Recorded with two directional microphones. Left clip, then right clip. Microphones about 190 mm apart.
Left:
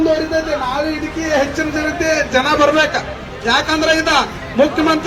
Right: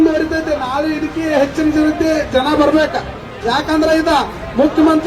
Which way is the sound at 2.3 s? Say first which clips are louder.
Even; 30° right (ahead or behind).